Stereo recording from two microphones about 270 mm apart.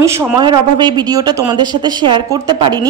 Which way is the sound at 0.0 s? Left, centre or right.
Centre.